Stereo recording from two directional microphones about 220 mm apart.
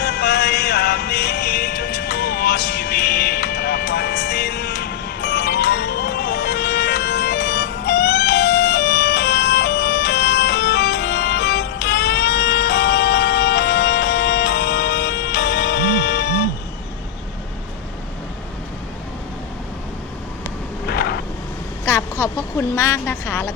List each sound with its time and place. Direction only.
0.0 s music: 50° left (ahead or behind)
20.8 s vehicle: 45° left (ahead or behind)
21.8 s a sound: 10° left (ahead or behind)
22.7 s a woman's voice: 10° left (ahead or behind)